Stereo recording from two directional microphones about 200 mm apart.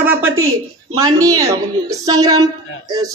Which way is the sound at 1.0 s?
15° right (ahead or behind).